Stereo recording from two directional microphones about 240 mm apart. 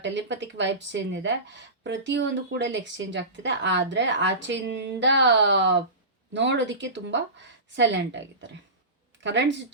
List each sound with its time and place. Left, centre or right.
0.0 s speech: right